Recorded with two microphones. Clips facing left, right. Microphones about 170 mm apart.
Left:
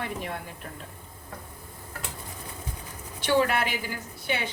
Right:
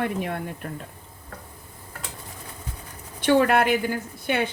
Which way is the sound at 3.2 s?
55° right (ahead or behind).